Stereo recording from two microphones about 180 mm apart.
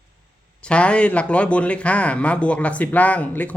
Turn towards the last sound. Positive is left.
turn(degrees=10)  # may be behind; listen again after turning